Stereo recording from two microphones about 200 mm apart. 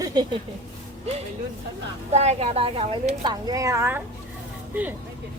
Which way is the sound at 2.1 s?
35° right (ahead or behind).